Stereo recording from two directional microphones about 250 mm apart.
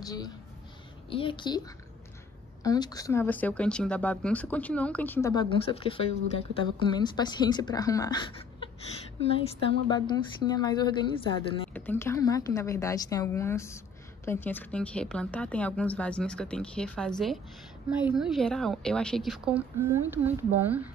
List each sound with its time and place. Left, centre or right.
0.0 s a woman's voice: centre
2.6 s speech: centre
11.7 s a woman's voice: centre